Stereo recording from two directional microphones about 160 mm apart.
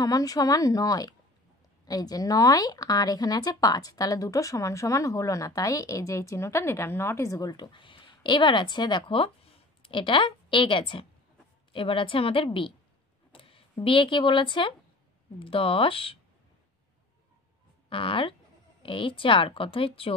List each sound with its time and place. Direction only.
0.0 s a woman's voice: 25° left (ahead or behind)
13.3 s a sound: 35° left (ahead or behind)
13.8 s a woman's voice: 30° left (ahead or behind)
17.8 s a woman's voice: 35° left (ahead or behind)